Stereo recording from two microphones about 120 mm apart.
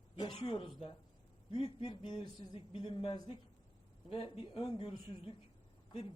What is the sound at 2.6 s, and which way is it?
A man's voice, 50° left (ahead or behind).